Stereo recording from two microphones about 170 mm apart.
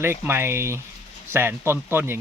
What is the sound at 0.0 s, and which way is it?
Speech, 15° right (ahead or behind).